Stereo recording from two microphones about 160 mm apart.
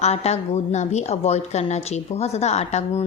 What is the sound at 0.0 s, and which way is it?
A woman's voice, 40° left (ahead or behind).